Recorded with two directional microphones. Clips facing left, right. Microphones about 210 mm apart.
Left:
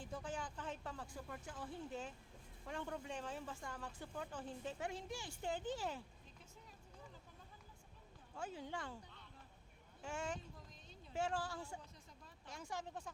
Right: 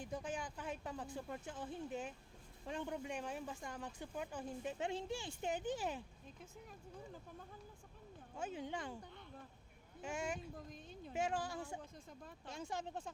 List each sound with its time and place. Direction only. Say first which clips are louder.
0.0 s speech: right 3 dB; 15° right (ahead or behind)
4.9 s speech: right 5 dB; 25° right (ahead or behind)
8.4 s speech: right 3 dB; 20° right (ahead or behind)
10.0 s speech: right 2 dB; 15° right (ahead or behind)
10.7 s speech: right 9 dB; 55° right (ahead or behind)
11.1 s speech: right 2 dB; 15° right (ahead or behind)
11.8 s speech: right 7 dB; 50° right (ahead or behind)
12.5 s speech: right 3 dB; 25° right (ahead or behind)